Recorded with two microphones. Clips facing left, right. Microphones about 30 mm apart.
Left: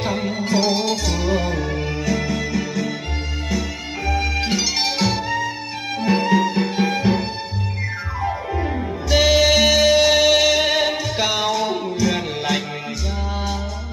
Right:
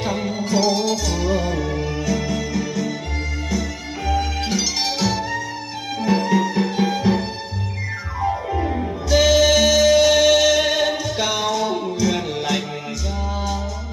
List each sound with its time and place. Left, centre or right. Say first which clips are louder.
0.0 s music: left 1 dB; centre